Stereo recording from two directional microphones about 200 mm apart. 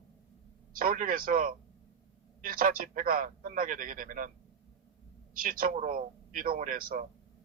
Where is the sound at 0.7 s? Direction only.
45° right (ahead or behind).